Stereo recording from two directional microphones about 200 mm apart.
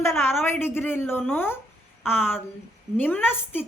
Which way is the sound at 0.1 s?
10° left (ahead or behind).